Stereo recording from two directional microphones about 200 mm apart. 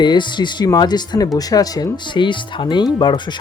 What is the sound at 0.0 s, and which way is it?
Speech, 20° left (ahead or behind).